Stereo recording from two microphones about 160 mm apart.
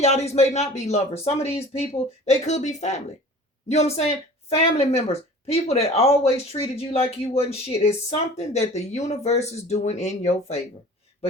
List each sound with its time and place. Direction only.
0.0 s speech: 45° left (ahead or behind)